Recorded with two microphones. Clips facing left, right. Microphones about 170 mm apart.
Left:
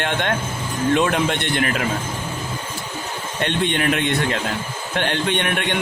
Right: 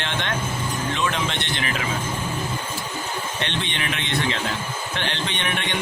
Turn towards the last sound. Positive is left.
turn(degrees=55)  # may be behind; listen again after turning